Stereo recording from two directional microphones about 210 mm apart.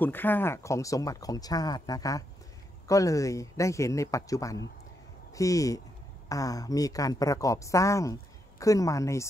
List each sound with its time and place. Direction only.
0.0 s a woman's voice: 10° left (ahead or behind)